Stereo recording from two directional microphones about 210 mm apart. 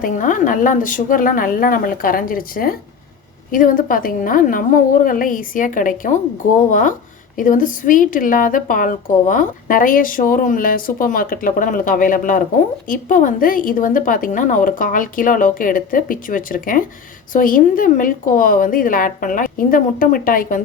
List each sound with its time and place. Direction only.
0.0 s a woman's voice: 40° left (ahead or behind)